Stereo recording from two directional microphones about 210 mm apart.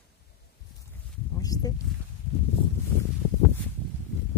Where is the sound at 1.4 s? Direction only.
15° left (ahead or behind).